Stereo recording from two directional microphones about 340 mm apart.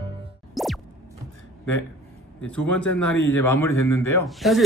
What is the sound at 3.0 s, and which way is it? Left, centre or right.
A man's voice, centre.